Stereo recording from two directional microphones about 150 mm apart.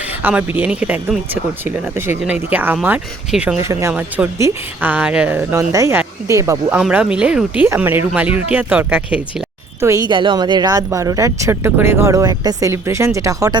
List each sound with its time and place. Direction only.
0.2 s speech: 10° right (ahead or behind)
3.6 s speech: 20° right (ahead or behind)
6.7 s speech: 5° right (ahead or behind)
9.8 s speech: 25° right (ahead or behind)